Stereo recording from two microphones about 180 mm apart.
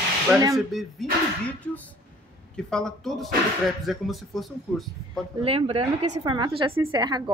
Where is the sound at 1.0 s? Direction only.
Centre (ahead or behind).